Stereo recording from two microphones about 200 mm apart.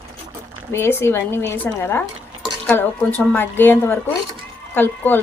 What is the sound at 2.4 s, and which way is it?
Dishes, 5° left (ahead or behind).